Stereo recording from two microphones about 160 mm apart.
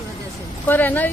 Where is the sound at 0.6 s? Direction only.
10° left (ahead or behind).